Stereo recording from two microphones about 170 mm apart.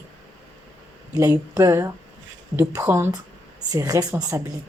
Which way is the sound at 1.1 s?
15° right (ahead or behind).